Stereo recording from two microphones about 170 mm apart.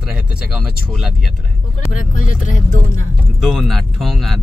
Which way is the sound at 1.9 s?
50° left (ahead or behind).